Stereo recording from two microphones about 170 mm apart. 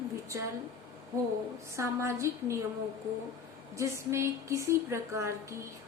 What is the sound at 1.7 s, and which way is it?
Speech, 15° right (ahead or behind).